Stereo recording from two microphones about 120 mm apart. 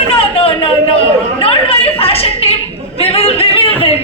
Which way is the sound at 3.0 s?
55° left (ahead or behind).